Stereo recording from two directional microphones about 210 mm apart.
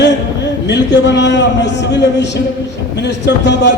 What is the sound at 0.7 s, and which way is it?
A man's voice, 55° left (ahead or behind).